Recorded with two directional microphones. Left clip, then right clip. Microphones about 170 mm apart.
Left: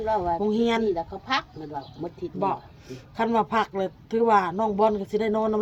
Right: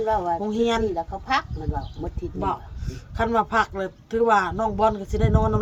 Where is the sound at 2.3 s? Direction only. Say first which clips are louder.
Even; 15° left (ahead or behind).